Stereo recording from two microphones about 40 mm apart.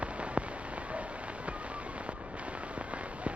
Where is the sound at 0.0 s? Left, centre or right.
Right.